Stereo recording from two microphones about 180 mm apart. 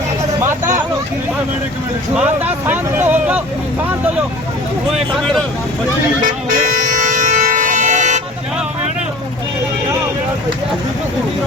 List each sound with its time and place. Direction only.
0.4 s vehicle: 15° right (ahead or behind)
2.1 s speech: 10° right (ahead or behind)
6.2 s music: 45° right (ahead or behind)